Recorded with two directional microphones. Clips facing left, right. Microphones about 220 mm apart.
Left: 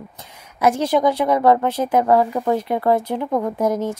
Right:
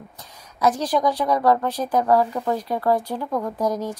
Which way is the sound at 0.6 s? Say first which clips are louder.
Left 3 dB; 25° left (ahead or behind).